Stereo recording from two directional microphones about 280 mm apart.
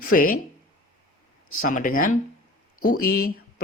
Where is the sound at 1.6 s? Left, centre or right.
Left.